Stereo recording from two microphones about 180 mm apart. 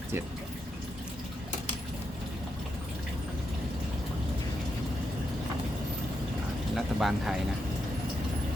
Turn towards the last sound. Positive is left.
turn(degrees=0)  # may be behind; listen again after turning